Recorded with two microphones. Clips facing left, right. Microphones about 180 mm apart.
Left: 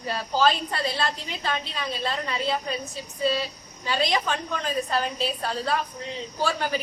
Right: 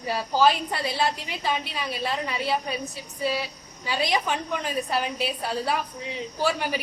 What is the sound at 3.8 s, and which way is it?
A woman's voice, 10° right (ahead or behind).